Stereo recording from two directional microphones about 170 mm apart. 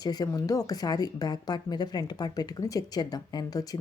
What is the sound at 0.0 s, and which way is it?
Speech, 20° left (ahead or behind).